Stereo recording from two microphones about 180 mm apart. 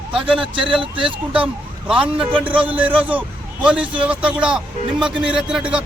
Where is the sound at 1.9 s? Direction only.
5° right (ahead or behind).